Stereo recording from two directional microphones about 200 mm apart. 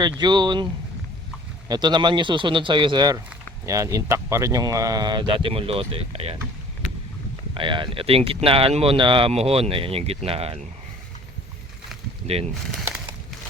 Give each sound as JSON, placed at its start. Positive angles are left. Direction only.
{"t": 0.2, "sound": "speech", "side_deg": -20}
{"t": 7.5, "sound": "speech", "side_deg": -25}